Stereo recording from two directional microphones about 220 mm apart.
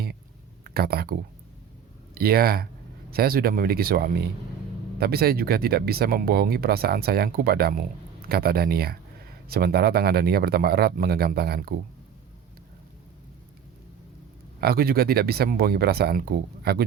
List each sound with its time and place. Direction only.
0.6 s speech: 45° right (ahead or behind)
14.6 s speech: 45° right (ahead or behind)